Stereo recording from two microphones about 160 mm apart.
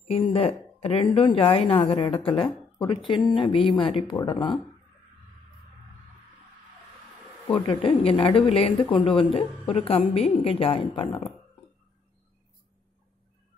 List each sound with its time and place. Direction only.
0.1 s speech: 40° left (ahead or behind)
7.4 s speech: 30° left (ahead or behind)